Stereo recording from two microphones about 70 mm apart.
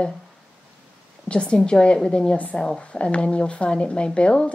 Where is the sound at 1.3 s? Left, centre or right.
Centre.